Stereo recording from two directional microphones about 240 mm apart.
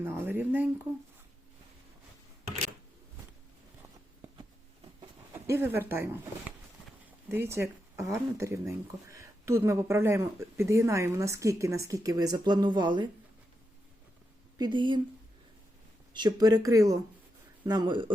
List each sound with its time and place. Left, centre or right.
0.0 s speech: centre
5.3 s speech: centre
7.3 s speech: centre
14.6 s speech: centre
16.1 s speech: centre